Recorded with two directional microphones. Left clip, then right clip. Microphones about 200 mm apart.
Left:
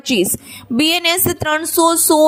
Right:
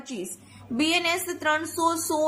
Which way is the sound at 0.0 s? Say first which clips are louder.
Left 19 dB; 40° left (ahead or behind).